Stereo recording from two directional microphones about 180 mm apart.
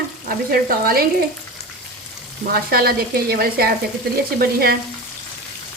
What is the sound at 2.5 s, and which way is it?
Speech, 60° right (ahead or behind).